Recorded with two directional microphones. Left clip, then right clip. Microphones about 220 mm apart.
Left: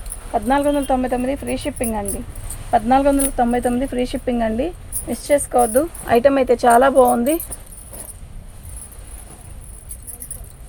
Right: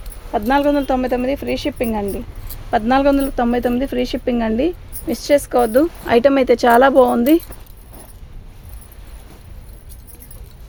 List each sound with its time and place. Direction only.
0.3 s speech: 50° right (ahead or behind)